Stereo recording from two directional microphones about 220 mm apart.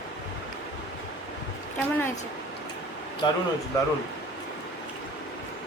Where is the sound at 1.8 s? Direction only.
10° left (ahead or behind).